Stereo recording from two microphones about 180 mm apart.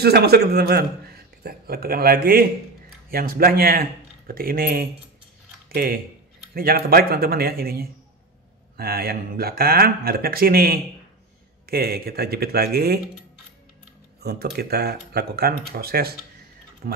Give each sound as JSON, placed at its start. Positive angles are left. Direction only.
{"t": 0.0, "sound": "speech", "side_deg": -60}
{"t": 14.2, "sound": "speech", "side_deg": -60}